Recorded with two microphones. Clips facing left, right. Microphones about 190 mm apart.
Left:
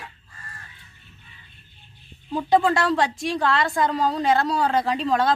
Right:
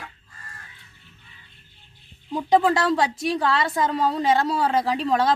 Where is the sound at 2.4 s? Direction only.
20° right (ahead or behind).